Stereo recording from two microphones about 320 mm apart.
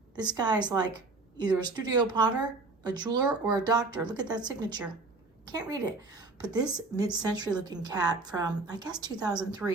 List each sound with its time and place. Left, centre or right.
0.2 s speech: centre
8.9 s a woman's voice: centre
9.2 s speech: centre